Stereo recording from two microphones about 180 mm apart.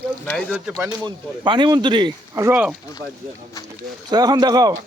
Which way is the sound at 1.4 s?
25° right (ahead or behind).